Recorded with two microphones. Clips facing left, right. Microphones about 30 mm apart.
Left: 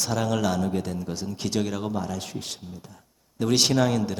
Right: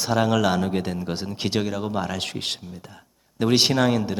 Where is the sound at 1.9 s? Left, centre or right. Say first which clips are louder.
Right 3 dB; right.